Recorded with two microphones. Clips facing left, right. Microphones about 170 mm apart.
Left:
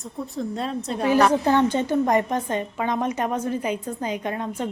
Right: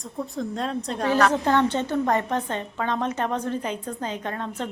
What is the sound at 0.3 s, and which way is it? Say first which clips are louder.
A woman's voice: left 1 dB; 5° left (ahead or behind).